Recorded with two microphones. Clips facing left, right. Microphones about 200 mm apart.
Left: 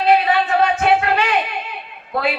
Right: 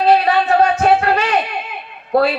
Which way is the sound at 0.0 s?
40° right (ahead or behind).